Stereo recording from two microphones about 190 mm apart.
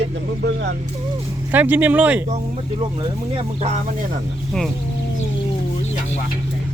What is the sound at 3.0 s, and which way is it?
Speech, 30° right (ahead or behind).